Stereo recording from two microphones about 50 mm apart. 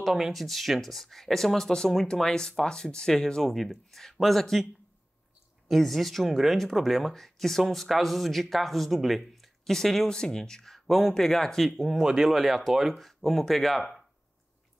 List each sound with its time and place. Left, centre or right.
0.0 s speech: centre
5.7 s speech: centre
11.7 s speech: centre